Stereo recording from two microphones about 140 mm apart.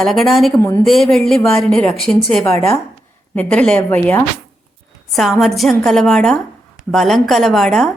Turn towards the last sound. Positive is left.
turn(degrees=0)  # may be behind; listen again after turning